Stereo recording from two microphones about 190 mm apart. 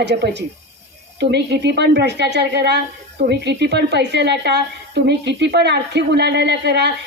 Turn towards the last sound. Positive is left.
turn(degrees=-60)  # may be behind; listen again after turning